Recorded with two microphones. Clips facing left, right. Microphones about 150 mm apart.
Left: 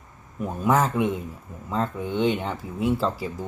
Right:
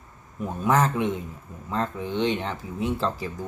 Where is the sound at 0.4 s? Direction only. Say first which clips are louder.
Left 1 dB; centre (ahead or behind).